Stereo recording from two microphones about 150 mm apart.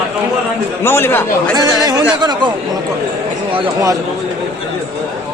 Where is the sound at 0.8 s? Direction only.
15° left (ahead or behind).